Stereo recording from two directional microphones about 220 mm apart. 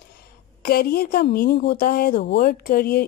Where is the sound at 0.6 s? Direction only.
45° left (ahead or behind).